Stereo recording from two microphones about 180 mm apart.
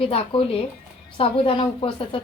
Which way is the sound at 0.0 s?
30° left (ahead or behind).